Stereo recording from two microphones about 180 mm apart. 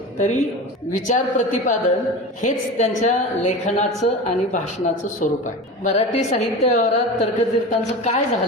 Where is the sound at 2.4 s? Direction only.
40° left (ahead or behind).